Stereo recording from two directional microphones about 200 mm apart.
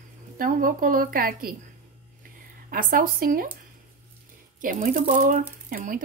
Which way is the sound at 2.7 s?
45° right (ahead or behind).